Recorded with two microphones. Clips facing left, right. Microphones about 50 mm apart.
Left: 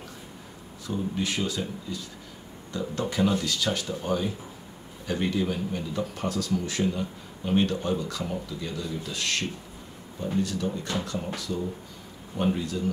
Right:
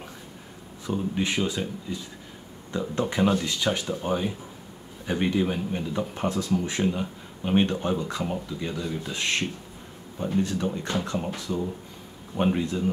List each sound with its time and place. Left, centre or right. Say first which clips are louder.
0.8 s speech: right 2 dB; right